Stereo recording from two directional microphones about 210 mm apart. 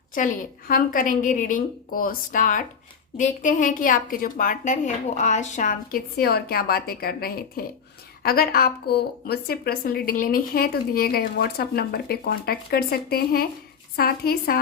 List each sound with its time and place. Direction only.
0.2 s a woman's voice: 40° left (ahead or behind)